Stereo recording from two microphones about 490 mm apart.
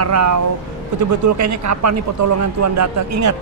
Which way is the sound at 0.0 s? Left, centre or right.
Right.